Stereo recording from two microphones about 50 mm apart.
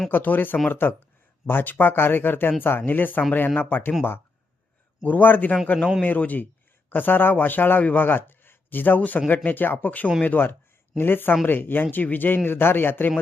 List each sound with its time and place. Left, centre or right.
0.1 s a man's voice: left
5.0 s a man's voice: left